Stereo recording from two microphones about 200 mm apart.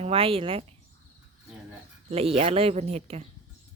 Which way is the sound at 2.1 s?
30° right (ahead or behind).